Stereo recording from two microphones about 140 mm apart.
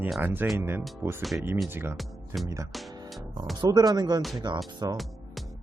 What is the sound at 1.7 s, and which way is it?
Speech, 15° right (ahead or behind).